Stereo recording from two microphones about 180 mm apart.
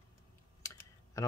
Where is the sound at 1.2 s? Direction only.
15° left (ahead or behind).